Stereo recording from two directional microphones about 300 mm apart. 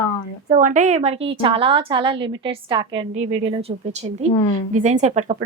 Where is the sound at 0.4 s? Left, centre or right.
Right.